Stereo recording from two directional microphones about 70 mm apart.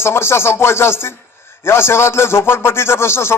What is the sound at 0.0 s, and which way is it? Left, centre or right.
Speech, left.